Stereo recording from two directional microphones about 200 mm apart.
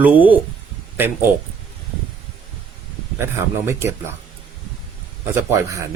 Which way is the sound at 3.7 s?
10° right (ahead or behind).